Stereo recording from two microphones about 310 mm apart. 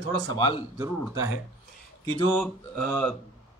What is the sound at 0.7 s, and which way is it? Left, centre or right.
Speech, centre.